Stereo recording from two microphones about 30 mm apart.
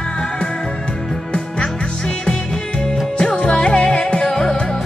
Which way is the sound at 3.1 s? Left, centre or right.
Left.